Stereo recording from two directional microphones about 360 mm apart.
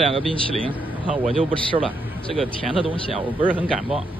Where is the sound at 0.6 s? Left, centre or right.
Centre.